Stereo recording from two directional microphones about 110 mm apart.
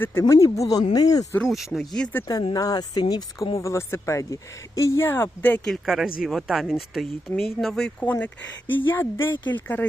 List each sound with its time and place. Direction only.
0.0 s speech: 20° left (ahead or behind)
1.4 s speech: centre (ahead or behind)
2.2 s speech: 35° left (ahead or behind); by 5.7 s 15° left (ahead or behind)
5.7 s speech: 5° right (ahead or behind)
8.0 s speech: 15° left (ahead or behind)